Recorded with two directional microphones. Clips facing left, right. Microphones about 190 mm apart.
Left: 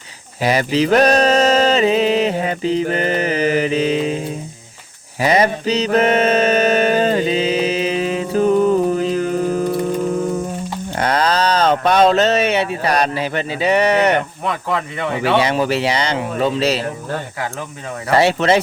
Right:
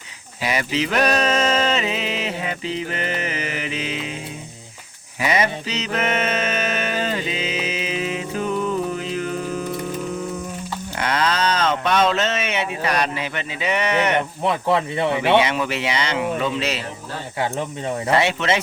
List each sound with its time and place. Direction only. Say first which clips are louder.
0.4 s music: left 7 dB; 35° left (ahead or behind)
5.2 s mantra: left 6 dB; 35° left (ahead or behind)
10.9 s speech: left 5 dB; 35° left (ahead or behind)
14.4 s speech: right 2 dB; 25° right (ahead or behind)
15.4 s speech: left 4 dB; 35° left (ahead or behind)
18.2 s speech: left 6 dB; 35° left (ahead or behind)